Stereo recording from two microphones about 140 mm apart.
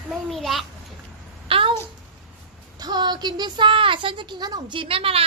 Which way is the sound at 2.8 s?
30° right (ahead or behind).